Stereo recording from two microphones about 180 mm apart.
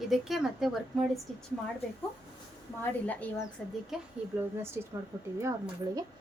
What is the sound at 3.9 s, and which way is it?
Speech, 5° right (ahead or behind).